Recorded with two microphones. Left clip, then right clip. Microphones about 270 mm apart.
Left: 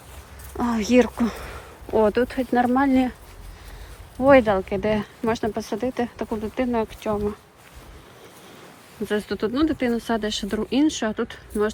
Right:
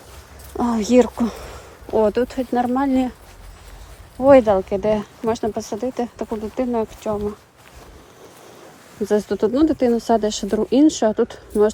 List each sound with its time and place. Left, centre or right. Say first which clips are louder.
0.5 s speech: right 3 dB; centre
4.2 s speech: right 4 dB; centre
9.0 s speech: right 6 dB; centre